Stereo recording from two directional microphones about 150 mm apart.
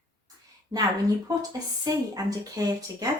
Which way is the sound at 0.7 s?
20° right (ahead or behind).